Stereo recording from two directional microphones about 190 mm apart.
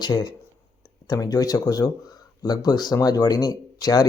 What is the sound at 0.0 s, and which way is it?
Speech, 20° left (ahead or behind).